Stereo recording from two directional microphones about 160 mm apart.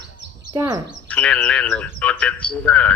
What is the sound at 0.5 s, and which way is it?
Speech, 25° right (ahead or behind).